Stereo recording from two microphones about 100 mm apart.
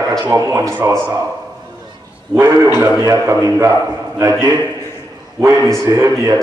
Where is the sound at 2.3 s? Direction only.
25° right (ahead or behind).